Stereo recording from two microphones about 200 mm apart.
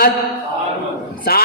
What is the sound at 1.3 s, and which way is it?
Speech, 50° left (ahead or behind).